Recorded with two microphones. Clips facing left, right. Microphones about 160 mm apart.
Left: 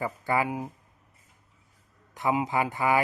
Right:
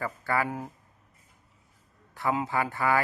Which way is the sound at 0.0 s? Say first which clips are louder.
Left 2 dB; 15° left (ahead or behind).